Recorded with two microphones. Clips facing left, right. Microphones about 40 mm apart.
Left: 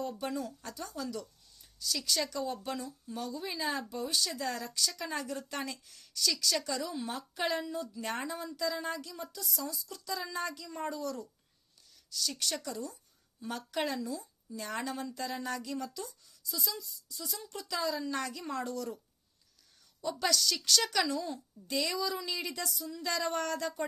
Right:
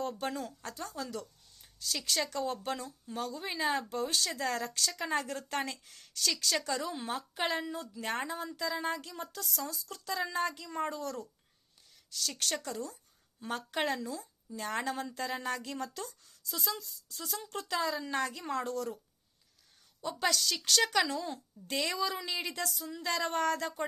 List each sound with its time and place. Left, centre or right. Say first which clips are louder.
0.0 s speech: even; right
1.1 s a sound: even; right
2.0 s a woman's voice: right 1 dB; right
3.8 s speech: right 1 dB; right
4.9 s a woman's voice: right 3 dB; right
20.0 s a woman's voice: even; right